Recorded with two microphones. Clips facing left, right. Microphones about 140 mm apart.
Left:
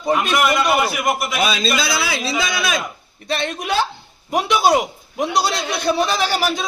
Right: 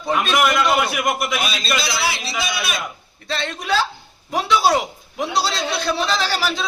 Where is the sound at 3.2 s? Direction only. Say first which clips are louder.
Left 1 dB; 20° left (ahead or behind).